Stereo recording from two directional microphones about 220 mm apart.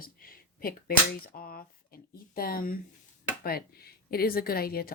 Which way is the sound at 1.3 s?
40° left (ahead or behind).